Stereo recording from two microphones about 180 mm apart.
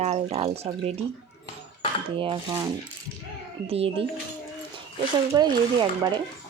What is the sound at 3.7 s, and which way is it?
Speech, 30° right (ahead or behind).